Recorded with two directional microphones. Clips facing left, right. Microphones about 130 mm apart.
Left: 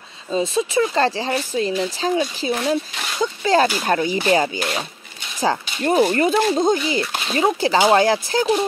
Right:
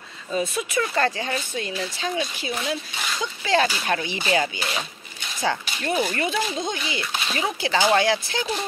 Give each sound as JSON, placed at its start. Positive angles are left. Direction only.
{"t": 0.3, "sound": "speech", "side_deg": 30}